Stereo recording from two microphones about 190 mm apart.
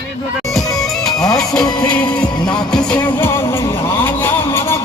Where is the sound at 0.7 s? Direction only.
Centre (ahead or behind).